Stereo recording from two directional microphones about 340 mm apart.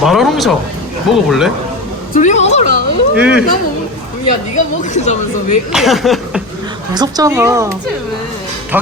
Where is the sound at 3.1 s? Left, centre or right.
Centre.